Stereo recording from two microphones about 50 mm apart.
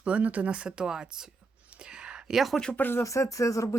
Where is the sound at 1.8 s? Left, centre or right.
Centre.